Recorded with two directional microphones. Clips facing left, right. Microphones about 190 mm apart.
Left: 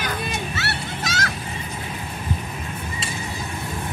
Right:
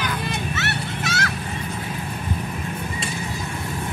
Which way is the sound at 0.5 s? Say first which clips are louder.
Right 2 dB; 35° left (ahead or behind).